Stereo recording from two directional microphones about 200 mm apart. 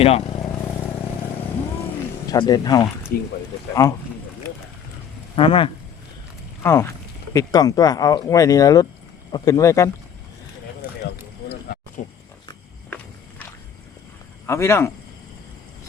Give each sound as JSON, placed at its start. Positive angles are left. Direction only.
{"t": 0.0, "sound": "vehicle", "side_deg": 30}
{"t": 2.2, "sound": "speech", "side_deg": 20}
{"t": 3.1, "sound": "speech", "side_deg": 45}
{"t": 5.4, "sound": "speech", "side_deg": 25}
{"t": 6.6, "sound": "speech", "side_deg": 15}
{"t": 12.0, "sound": "speech", "side_deg": 35}
{"t": 14.4, "sound": "speech", "side_deg": 15}